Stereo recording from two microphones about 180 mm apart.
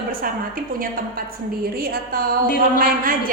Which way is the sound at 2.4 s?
50° left (ahead or behind).